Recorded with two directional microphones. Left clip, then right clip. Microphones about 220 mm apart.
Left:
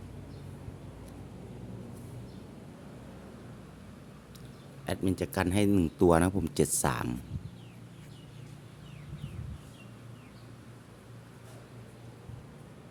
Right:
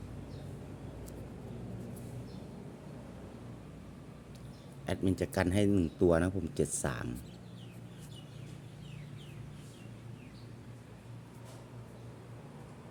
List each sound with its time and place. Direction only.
4.9 s speech: 10° left (ahead or behind)